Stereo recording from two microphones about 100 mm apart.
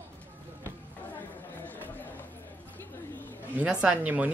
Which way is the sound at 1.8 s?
20° left (ahead or behind).